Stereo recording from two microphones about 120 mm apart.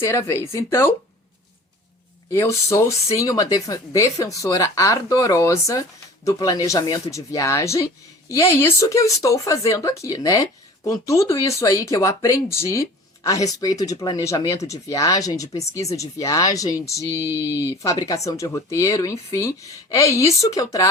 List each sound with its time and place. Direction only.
0.0 s speech: 20° left (ahead or behind)
2.3 s speech: 25° left (ahead or behind)
17.5 s speech: 20° right (ahead or behind)
17.8 s speech: 30° left (ahead or behind)